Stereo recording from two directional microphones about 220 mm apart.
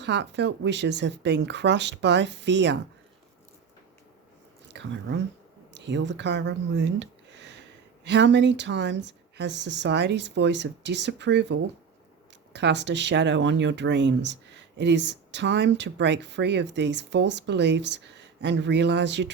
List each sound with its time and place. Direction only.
0.0 s speech: 50° right (ahead or behind)
4.7 s speech: 55° right (ahead or behind)